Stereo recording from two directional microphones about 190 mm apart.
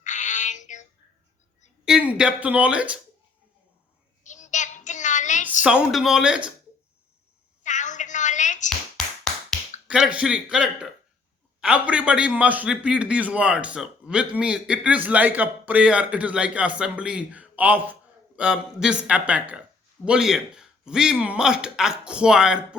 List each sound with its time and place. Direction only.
0.0 s child singing: 40° left (ahead or behind)
1.8 s a man's voice: 5° right (ahead or behind)
4.2 s child singing: 40° left (ahead or behind)
5.6 s a man's voice: 5° right (ahead or behind)
7.6 s a sound: 40° left (ahead or behind)
9.8 s a man's voice: 5° right (ahead or behind)